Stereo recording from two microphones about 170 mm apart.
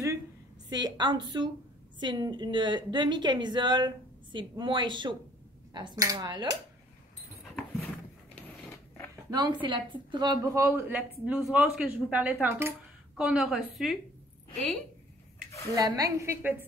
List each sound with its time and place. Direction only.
0.7 s a woman's voice: 25° right (ahead or behind)
9.1 s a woman's voice: 25° right (ahead or behind)
10.4 s a woman's voice: 15° right (ahead or behind)
15.7 s a woman's voice: 20° right (ahead or behind)